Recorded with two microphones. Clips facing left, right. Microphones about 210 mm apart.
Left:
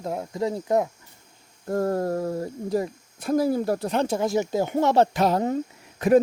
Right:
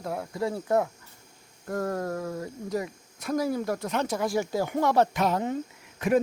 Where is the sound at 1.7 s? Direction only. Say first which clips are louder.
Left 5 dB; 30° left (ahead or behind).